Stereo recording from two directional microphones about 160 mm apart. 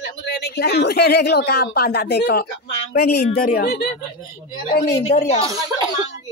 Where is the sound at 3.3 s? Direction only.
75° left (ahead or behind).